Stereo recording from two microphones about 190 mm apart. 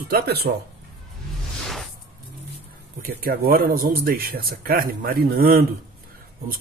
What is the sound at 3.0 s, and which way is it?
Speech, 50° right (ahead or behind).